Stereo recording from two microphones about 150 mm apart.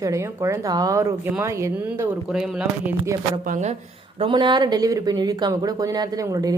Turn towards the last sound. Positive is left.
turn(degrees=-25)  # may be behind; listen again after turning